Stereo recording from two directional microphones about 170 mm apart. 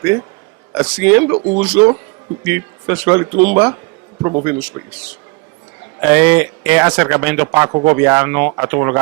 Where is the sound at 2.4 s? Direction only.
15° right (ahead or behind).